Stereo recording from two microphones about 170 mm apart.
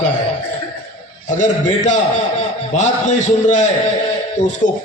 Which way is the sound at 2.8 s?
45° left (ahead or behind).